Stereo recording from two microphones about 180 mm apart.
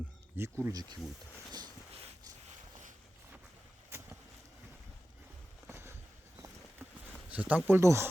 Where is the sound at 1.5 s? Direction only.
20° right (ahead or behind).